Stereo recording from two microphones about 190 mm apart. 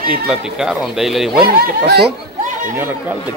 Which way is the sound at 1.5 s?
55° right (ahead or behind).